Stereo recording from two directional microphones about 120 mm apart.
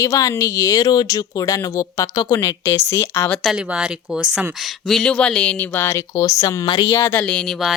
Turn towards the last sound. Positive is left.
turn(degrees=0)  # may be behind; listen again after turning